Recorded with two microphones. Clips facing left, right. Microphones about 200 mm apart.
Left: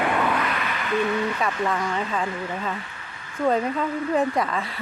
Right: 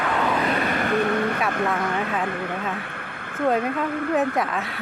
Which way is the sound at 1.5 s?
60° right (ahead or behind).